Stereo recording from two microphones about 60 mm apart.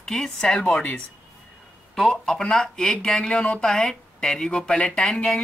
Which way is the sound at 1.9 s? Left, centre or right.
Centre.